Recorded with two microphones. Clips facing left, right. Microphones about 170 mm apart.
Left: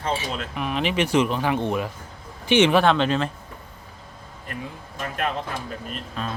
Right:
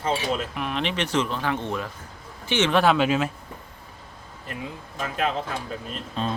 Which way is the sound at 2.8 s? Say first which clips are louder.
Left 1 dB; 5° right (ahead or behind).